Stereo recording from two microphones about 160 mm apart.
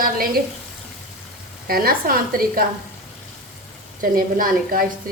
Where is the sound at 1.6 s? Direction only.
65° right (ahead or behind).